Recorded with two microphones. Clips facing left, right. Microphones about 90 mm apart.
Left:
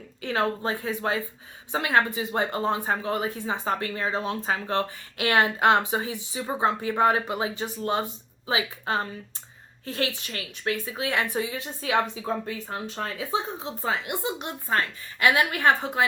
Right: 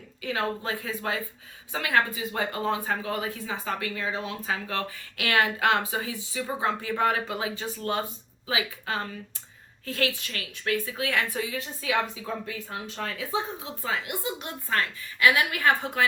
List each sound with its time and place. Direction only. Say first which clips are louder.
0.2 s speech: left 3 dB; 35° left (ahead or behind)